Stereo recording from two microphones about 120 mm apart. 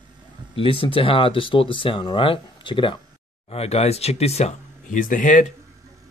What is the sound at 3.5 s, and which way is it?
Speech, 60° left (ahead or behind).